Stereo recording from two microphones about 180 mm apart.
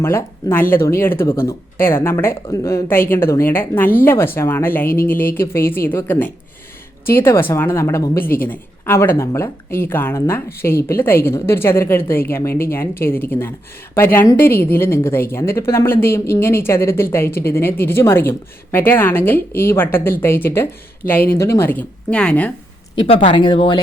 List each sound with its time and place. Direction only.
0.0 s a woman's voice: 15° left (ahead or behind)
23.0 s speech: 30° left (ahead or behind)